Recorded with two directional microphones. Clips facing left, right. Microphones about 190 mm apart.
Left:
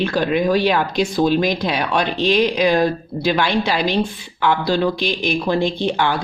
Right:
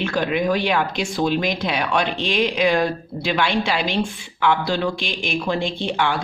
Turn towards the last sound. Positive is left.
turn(degrees=35)  # may be behind; listen again after turning